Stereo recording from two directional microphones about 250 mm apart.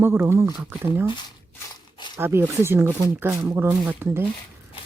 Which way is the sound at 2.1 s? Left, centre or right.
Centre.